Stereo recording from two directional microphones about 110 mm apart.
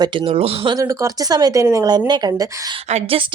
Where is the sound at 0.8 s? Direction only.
30° right (ahead or behind).